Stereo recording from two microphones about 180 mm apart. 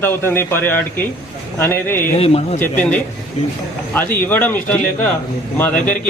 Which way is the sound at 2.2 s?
35° left (ahead or behind).